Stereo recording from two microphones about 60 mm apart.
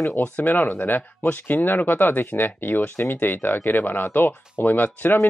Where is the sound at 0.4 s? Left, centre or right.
Left.